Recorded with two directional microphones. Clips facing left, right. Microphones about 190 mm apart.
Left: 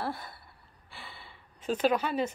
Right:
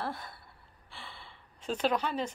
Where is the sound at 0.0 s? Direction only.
10° left (ahead or behind).